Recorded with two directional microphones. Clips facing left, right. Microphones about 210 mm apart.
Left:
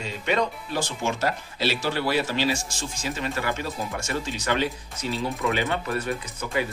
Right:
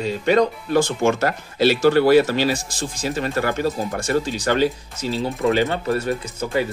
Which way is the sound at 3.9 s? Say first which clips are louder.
Right 8 dB; 30° right (ahead or behind).